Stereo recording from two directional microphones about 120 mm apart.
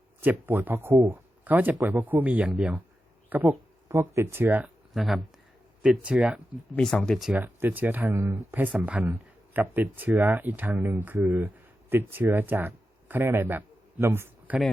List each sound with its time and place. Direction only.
0.2 s speech: 15° right (ahead or behind)
4.9 s speech: centre (ahead or behind)
6.7 s speech: 5° left (ahead or behind)
7.3 s speech: 15° right (ahead or behind)